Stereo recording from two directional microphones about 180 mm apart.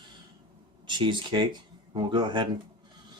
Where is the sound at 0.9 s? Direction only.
25° right (ahead or behind).